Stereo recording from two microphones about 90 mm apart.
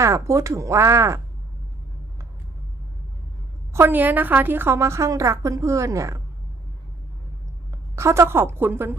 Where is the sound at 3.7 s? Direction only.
25° right (ahead or behind).